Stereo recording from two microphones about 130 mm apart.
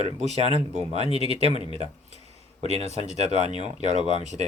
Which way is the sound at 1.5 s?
45° left (ahead or behind).